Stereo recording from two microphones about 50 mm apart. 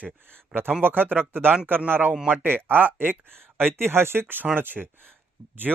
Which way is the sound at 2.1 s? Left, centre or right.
Centre.